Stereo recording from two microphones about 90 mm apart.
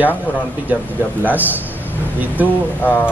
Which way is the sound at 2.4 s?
20° right (ahead or behind).